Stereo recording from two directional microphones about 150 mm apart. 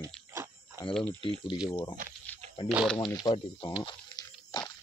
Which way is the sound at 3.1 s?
25° left (ahead or behind).